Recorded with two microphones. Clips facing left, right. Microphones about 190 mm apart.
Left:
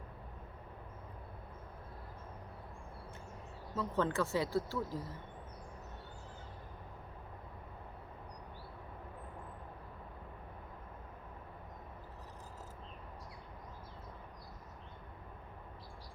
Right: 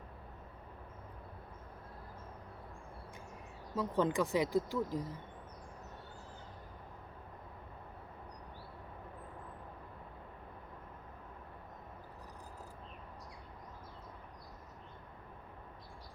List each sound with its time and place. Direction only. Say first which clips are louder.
3.8 s speech: right 2 dB; 15° right (ahead or behind)